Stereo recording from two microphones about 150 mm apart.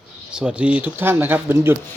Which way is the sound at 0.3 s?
5° right (ahead or behind).